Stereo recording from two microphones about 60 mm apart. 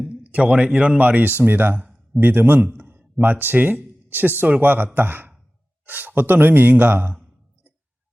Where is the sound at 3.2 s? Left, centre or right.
Right.